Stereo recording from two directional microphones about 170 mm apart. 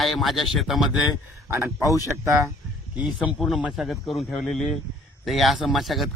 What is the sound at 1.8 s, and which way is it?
Speech, 20° left (ahead or behind).